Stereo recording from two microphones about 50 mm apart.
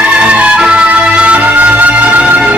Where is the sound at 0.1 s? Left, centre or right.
Right.